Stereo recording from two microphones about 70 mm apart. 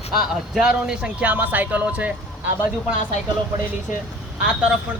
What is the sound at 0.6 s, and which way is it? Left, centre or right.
Speech, centre.